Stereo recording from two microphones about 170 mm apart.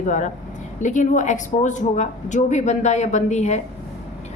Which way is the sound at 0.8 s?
45° left (ahead or behind).